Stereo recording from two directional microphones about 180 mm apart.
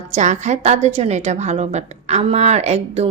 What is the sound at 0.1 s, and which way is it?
A woman's voice, 40° right (ahead or behind).